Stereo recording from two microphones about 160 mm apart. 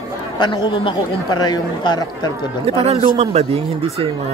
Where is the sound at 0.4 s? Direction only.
30° left (ahead or behind).